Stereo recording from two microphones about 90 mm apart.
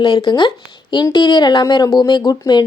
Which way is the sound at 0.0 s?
55° left (ahead or behind).